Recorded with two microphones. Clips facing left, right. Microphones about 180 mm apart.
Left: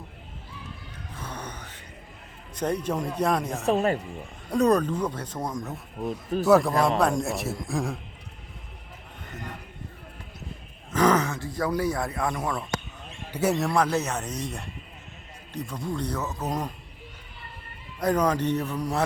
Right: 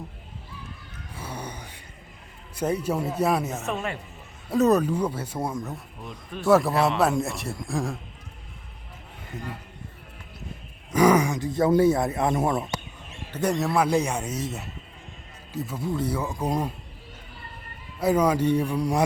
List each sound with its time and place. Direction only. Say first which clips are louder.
1.1 s music: right 2 dB; 10° right (ahead or behind)
2.6 s a man's voice: right 1 dB; 10° right (ahead or behind)
3.7 s speech: left 10 dB; 35° left (ahead or behind)
4.4 s a man's voice: right 1 dB; 5° right (ahead or behind)
6.0 s speech: left 9 dB; 40° left (ahead or behind)
6.4 s a man's voice: even; centre (ahead or behind)
9.3 s speech: right 3 dB; 10° right (ahead or behind)
10.9 s speech: right 3 dB; 10° right (ahead or behind)
13.3 s a man's voice: even; 5° left (ahead or behind); by 16.7 s 10° right (ahead or behind)
18.0 s a man's voice: right 2 dB; 10° right (ahead or behind)